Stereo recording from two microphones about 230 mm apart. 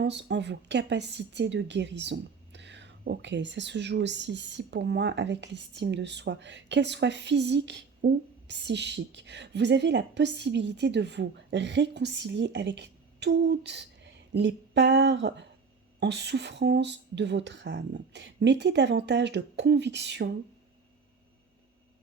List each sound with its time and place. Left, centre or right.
0.0 s a woman's voice: right